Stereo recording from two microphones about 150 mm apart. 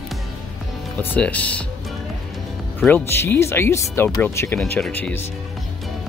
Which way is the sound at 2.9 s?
15° left (ahead or behind).